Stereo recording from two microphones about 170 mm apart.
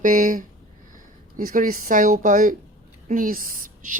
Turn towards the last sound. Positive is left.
turn(degrees=-50)  # may be behind; listen again after turning